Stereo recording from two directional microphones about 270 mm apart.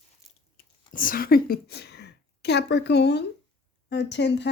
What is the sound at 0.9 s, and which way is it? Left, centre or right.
A woman's voice, left.